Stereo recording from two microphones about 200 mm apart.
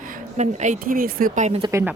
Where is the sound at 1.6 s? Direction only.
15° right (ahead or behind).